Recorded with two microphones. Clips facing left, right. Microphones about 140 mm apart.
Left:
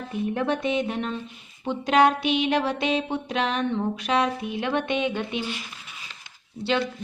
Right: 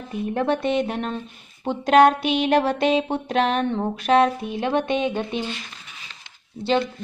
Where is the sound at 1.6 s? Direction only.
45° right (ahead or behind).